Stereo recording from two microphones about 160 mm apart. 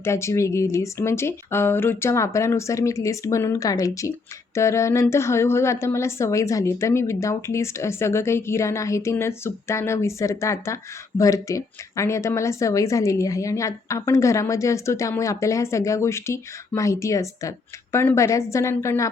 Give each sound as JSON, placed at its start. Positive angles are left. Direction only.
{"t": 0.0, "sound": "a woman's voice", "side_deg": 15}